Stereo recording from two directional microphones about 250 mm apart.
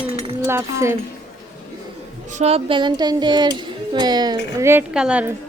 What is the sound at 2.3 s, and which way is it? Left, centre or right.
Speech, right.